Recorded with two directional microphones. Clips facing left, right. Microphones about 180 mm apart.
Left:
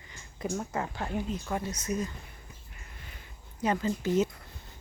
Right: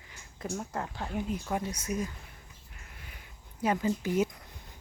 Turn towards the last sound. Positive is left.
turn(degrees=-15)  # may be behind; listen again after turning